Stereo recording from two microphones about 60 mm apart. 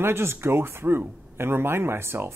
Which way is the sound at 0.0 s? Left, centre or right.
Right.